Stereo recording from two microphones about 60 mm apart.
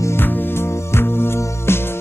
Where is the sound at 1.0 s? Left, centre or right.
Left.